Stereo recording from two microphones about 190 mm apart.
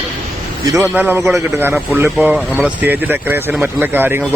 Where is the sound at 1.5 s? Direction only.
15° right (ahead or behind).